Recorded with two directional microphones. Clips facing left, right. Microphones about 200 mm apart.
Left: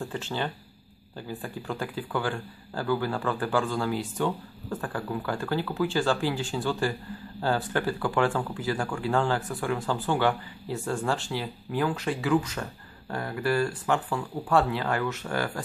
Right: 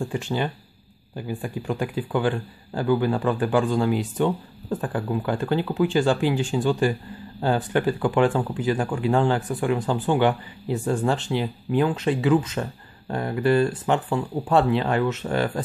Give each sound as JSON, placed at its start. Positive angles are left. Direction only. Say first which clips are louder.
{"t": 0.0, "sound": "speech", "louder": "right 5 dB", "side_deg": -15}